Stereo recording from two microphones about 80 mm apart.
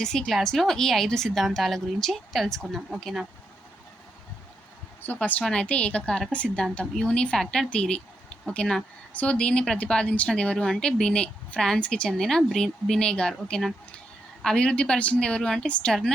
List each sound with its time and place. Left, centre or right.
0.0 s a woman's voice: centre
5.0 s speech: left
5.4 s a woman's voice: centre